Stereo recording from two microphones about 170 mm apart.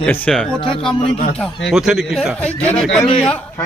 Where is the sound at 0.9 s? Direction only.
35° left (ahead or behind).